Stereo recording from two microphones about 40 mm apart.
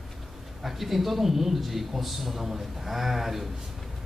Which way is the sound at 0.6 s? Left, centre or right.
Centre.